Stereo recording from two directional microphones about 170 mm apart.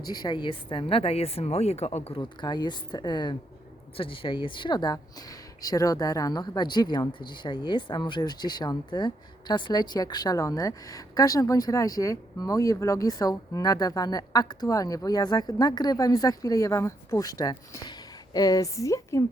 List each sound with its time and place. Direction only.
0.0 s a woman's voice: 25° left (ahead or behind); by 2.1 s 40° left (ahead or behind)
2.1 s speech: 25° left (ahead or behind)